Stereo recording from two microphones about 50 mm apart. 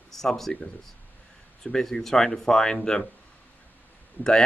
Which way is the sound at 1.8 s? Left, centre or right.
Centre.